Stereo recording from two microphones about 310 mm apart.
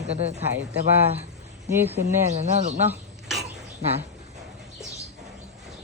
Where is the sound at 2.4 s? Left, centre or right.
Right.